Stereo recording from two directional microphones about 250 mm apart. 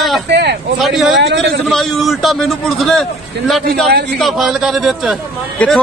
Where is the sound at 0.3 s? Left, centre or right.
Right.